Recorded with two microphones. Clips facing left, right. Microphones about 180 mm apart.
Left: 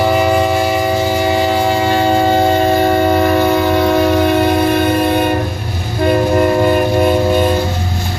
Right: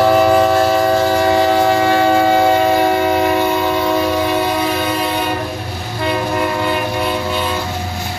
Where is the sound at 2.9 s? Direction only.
40° left (ahead or behind).